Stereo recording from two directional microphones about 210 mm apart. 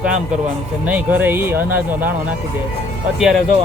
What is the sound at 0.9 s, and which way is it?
Speech, 10° right (ahead or behind).